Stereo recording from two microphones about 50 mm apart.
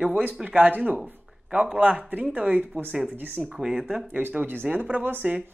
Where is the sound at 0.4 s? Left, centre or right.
Right.